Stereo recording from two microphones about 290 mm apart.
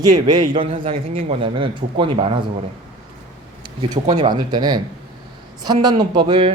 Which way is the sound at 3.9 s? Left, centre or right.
Centre.